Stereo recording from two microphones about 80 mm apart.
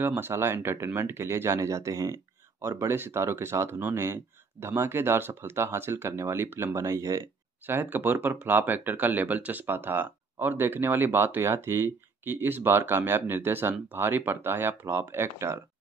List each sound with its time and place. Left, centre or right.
0.0 s speech: right
2.8 s speech: right
7.6 s speech: right